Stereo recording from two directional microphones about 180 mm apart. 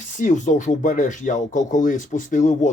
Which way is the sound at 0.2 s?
45° left (ahead or behind).